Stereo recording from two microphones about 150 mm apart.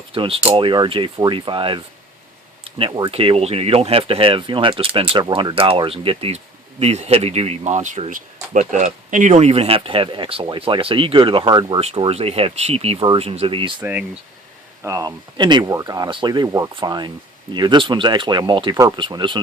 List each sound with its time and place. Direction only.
0.1 s speech: 40° right (ahead or behind)
11.8 s speech: 40° right (ahead or behind)
14.8 s speech: 25° right (ahead or behind)